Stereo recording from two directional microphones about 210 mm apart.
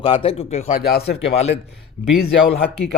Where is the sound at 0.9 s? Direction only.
50° left (ahead or behind).